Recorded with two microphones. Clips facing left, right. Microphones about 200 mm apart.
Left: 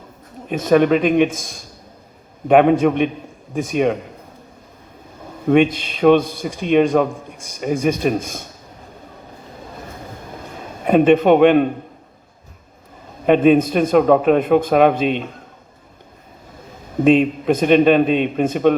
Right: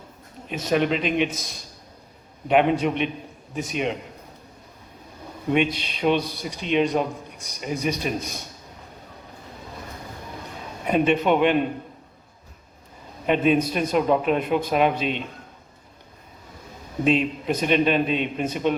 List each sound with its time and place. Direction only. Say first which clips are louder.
0.4 s a man's voice: left 8 dB; 50° left (ahead or behind)
5.5 s a man's voice: left 8 dB; 50° left (ahead or behind)
10.8 s a man's voice: left 8 dB; 50° left (ahead or behind)
13.2 s a man's voice: left 7 dB; 50° left (ahead or behind)
17.0 s a man's voice: left 8 dB; 50° left (ahead or behind)